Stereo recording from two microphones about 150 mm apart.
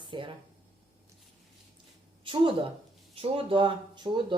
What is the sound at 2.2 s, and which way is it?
Speech, 35° right (ahead or behind).